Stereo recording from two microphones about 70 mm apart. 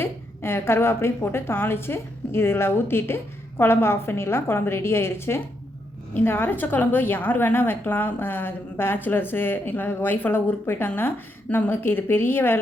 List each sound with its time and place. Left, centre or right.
0.0 s a woman's voice: left